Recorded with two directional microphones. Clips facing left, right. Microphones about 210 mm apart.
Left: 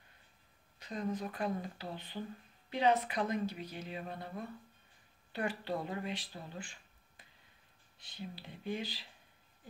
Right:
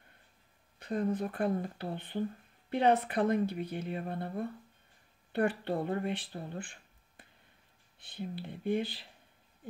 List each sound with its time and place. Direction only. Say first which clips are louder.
0.7 s speech: right 6 dB; 55° right (ahead or behind)